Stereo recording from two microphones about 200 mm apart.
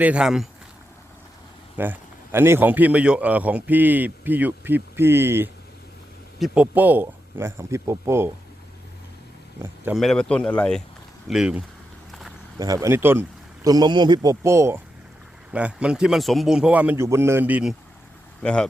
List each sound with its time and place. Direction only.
0.0 s a man's voice: 5° right (ahead or behind)
1.7 s a man's voice: 10° right (ahead or behind)
9.8 s a man's voice: centre (ahead or behind)
12.5 s a man's voice: 15° right (ahead or behind)
18.4 s a man's voice: 5° left (ahead or behind)